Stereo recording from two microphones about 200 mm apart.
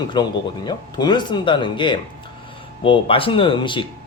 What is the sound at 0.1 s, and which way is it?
Speech, 20° left (ahead or behind).